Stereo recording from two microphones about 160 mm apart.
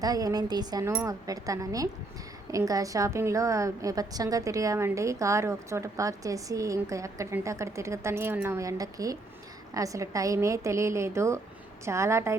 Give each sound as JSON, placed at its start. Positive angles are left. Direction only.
{"t": 0.0, "sound": "a woman's voice", "side_deg": -25}